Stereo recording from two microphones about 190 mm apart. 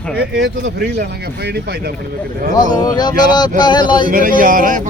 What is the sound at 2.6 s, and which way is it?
Speech, 20° left (ahead or behind).